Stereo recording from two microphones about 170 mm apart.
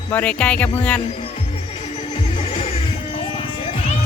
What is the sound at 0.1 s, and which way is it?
Speech, 10° left (ahead or behind).